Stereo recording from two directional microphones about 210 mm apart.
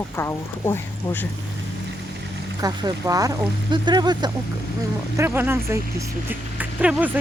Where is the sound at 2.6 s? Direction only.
20° right (ahead or behind).